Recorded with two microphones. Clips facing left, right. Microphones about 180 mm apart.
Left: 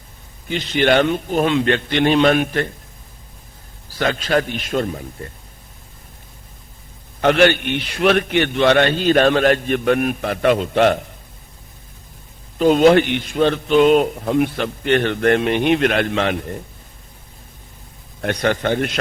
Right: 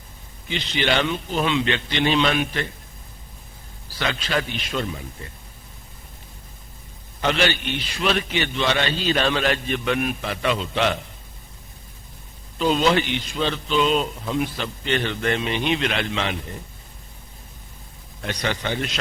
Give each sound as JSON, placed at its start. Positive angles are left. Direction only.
{"t": 0.4, "sound": "a man's voice", "side_deg": 50}
{"t": 3.9, "sound": "a man's voice", "side_deg": 45}
{"t": 7.2, "sound": "a man's voice", "side_deg": 55}
{"t": 12.5, "sound": "a man's voice", "side_deg": 55}
{"t": 18.2, "sound": "a man's voice", "side_deg": 55}